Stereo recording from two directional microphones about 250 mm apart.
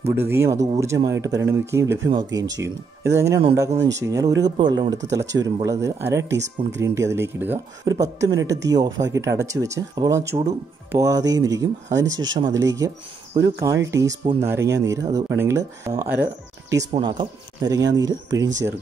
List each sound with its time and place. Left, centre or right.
0.1 s speech: centre